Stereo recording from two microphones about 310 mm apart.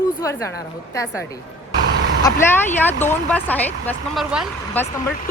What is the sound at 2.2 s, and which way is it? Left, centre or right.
Speech, centre.